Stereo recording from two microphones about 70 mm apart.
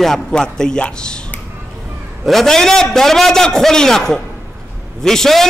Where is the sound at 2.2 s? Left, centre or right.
Centre.